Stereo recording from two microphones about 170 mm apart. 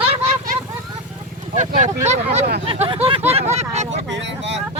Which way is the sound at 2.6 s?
30° right (ahead or behind).